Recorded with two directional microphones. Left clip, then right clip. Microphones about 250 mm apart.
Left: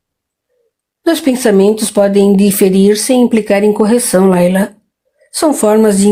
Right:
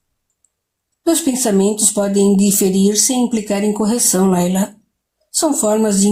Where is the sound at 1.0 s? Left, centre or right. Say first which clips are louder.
Left 5 dB; left.